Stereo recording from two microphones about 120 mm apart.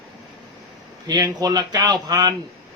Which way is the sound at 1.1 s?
35° right (ahead or behind).